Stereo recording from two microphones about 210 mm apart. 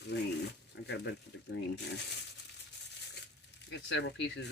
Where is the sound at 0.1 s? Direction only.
55° left (ahead or behind).